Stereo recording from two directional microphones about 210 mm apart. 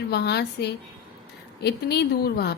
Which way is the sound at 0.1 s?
50° left (ahead or behind).